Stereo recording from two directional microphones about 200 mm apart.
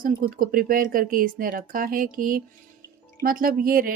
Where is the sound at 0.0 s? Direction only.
45° right (ahead or behind).